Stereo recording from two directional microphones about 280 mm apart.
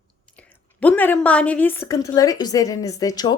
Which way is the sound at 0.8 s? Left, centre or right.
Centre.